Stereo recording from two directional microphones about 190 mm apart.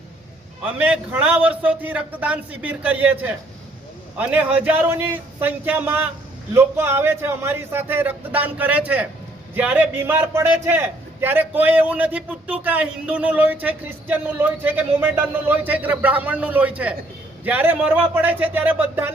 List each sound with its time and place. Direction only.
0.6 s a man's voice: 10° right (ahead or behind)